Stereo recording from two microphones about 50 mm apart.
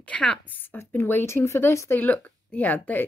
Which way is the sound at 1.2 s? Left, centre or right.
Left.